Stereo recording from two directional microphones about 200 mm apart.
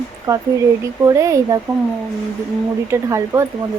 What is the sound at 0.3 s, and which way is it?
Speech, 15° right (ahead or behind).